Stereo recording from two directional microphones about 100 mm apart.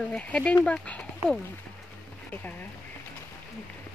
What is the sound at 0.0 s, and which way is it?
Speech, 10° left (ahead or behind).